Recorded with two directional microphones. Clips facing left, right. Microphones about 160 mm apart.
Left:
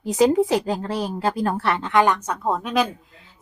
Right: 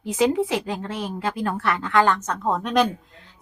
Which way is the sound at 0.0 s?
40° left (ahead or behind).